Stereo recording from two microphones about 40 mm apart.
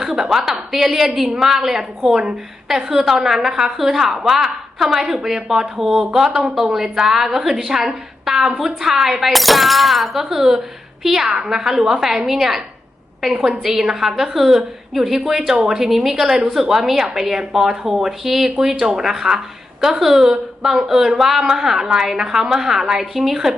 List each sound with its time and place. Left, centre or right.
0.0 s a woman's voice: centre